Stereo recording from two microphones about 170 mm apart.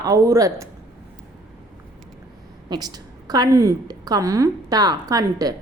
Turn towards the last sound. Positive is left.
turn(degrees=-20)  # may be behind; listen again after turning